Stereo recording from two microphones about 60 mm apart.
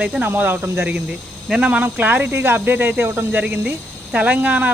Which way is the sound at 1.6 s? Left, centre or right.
Right.